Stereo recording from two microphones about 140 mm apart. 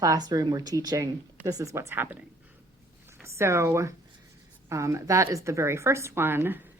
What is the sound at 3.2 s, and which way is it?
A woman's voice, 20° right (ahead or behind).